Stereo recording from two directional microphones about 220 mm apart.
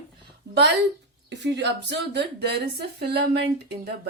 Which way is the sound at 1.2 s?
50° right (ahead or behind).